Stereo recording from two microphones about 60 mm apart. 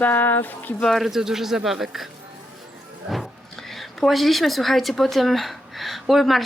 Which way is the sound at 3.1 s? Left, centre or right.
Centre.